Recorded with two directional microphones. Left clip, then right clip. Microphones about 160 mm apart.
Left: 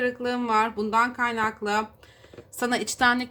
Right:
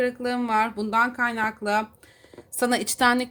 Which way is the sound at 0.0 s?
40° right (ahead or behind).